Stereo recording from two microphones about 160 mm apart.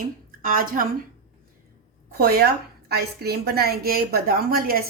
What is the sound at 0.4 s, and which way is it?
Speech, 60° right (ahead or behind).